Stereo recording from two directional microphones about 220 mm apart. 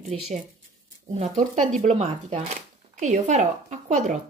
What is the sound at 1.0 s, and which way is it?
Speech, 30° right (ahead or behind).